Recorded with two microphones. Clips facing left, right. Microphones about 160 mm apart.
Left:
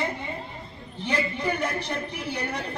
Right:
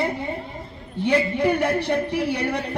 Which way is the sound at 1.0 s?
60° right (ahead or behind).